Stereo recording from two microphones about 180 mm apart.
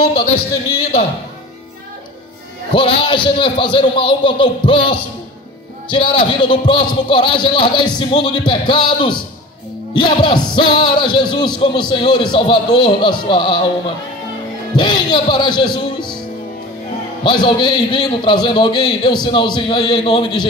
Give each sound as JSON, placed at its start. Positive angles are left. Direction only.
{"t": 2.7, "sound": "speech", "side_deg": 30}
{"t": 14.8, "sound": "speech", "side_deg": 25}
{"t": 17.2, "sound": "speech", "side_deg": 25}